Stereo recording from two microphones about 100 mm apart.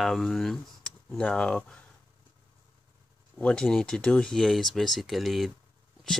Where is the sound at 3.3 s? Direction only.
10° left (ahead or behind).